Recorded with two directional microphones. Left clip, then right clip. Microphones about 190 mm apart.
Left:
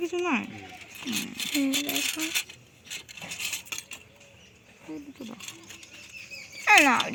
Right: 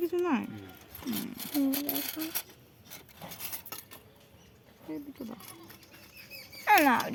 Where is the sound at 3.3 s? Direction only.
10° left (ahead or behind).